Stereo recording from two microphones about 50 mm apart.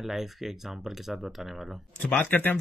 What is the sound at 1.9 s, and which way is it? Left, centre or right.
Speech, left.